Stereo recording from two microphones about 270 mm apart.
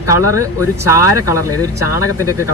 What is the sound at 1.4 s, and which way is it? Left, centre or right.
Speech, left.